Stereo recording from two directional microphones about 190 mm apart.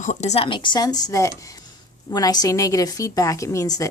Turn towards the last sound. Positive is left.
turn(degrees=15)  # may be behind; listen again after turning